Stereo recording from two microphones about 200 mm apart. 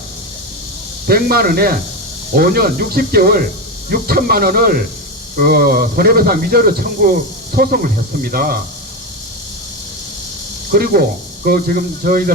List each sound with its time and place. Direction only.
1.0 s speech: 50° right (ahead or behind)
10.7 s speech: 50° right (ahead or behind)